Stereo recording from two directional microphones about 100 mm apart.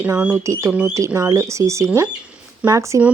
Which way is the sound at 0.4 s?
30° right (ahead or behind).